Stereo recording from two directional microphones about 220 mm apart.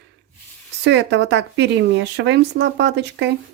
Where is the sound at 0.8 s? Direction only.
50° right (ahead or behind).